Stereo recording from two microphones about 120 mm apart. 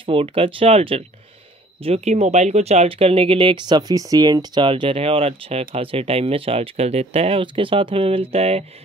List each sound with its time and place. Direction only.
0.0 s speech: 50° right (ahead or behind)